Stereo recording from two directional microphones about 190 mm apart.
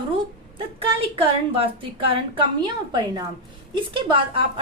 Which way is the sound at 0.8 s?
30° right (ahead or behind).